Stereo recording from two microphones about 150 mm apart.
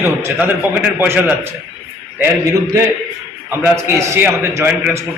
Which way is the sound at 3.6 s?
20° right (ahead or behind).